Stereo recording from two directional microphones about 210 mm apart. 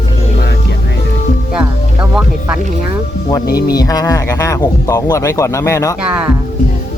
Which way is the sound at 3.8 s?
15° left (ahead or behind).